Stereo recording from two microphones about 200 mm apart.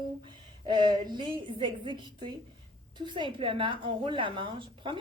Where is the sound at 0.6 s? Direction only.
20° right (ahead or behind).